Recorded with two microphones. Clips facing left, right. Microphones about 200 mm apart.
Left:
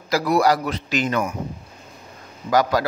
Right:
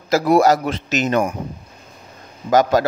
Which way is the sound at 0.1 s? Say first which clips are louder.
Right 4 dB; 25° right (ahead or behind).